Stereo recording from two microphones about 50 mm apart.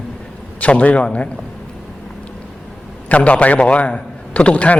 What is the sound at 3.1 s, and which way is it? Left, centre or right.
A man's voice, left.